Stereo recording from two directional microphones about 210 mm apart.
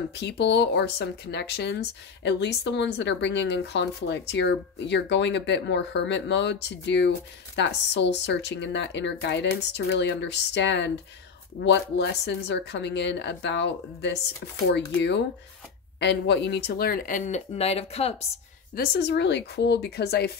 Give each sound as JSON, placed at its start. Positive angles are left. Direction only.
{"t": 0.1, "sound": "speech", "side_deg": 55}
{"t": 18.8, "sound": "speech", "side_deg": 55}